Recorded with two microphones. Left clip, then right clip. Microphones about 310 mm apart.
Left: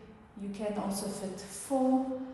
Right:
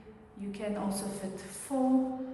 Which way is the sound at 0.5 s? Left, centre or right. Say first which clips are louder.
Even; centre.